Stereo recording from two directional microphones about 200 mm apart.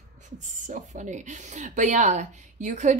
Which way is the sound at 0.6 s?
40° right (ahead or behind).